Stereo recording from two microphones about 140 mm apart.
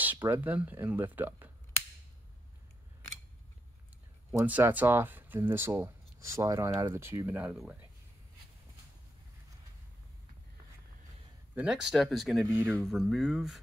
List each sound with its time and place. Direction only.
0.0 s speech: 15° right (ahead or behind)
4.3 s speech: 15° right (ahead or behind)
11.5 s speech: 5° right (ahead or behind)